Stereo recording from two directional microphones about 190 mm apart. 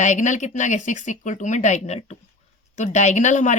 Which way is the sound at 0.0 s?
40° left (ahead or behind).